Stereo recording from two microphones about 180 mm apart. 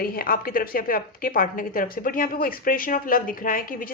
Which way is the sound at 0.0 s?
55° left (ahead or behind).